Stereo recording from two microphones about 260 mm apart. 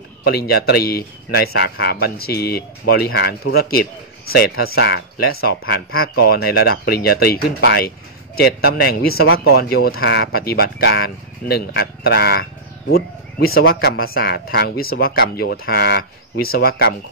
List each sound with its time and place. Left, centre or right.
0.2 s speech: left